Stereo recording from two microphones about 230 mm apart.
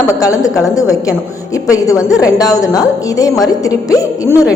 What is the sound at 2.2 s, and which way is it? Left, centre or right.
A woman's voice, centre.